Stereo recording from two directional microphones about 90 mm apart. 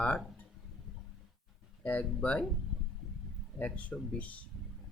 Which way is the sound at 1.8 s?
15° left (ahead or behind).